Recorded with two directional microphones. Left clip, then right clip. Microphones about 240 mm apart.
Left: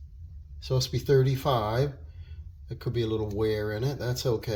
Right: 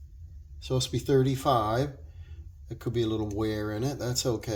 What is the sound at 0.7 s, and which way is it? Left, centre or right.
Speech, right.